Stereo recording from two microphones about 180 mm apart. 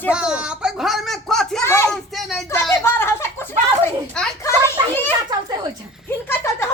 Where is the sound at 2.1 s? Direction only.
Centre (ahead or behind).